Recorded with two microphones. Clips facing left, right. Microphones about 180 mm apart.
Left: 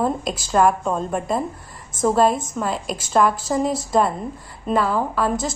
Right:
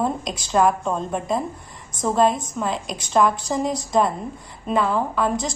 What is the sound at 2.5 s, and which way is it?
A woman's voice, 5° left (ahead or behind).